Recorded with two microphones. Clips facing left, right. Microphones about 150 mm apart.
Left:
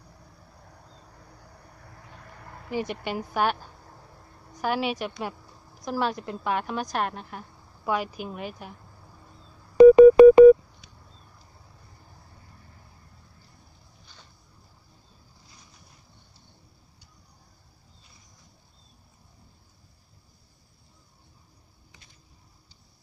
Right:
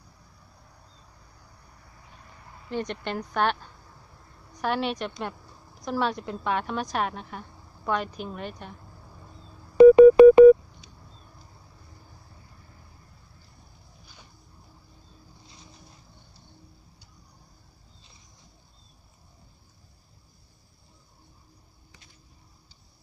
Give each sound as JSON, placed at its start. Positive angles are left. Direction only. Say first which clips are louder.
{"t": 2.1, "sound": "vehicle", "louder": "left 4 dB", "side_deg": 60}
{"t": 2.7, "sound": "a woman's voice", "louder": "left 1 dB", "side_deg": 5}
{"t": 4.6, "sound": "a woman's voice", "louder": "even", "side_deg": 5}
{"t": 9.8, "sound": "telephone dialing", "louder": "left 1 dB", "side_deg": 40}